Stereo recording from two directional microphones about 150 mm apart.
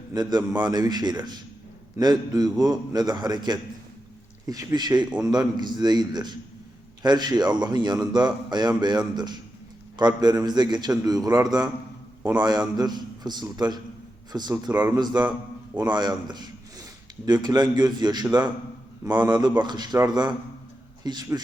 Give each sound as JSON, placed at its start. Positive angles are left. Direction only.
{"t": 0.1, "sound": "a man's voice", "side_deg": -25}
{"t": 14.7, "sound": "speech", "side_deg": -10}
{"t": 14.9, "sound": "a man's voice", "side_deg": -30}